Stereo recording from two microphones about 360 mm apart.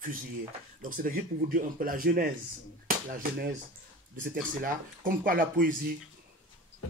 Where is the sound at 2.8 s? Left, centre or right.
Right.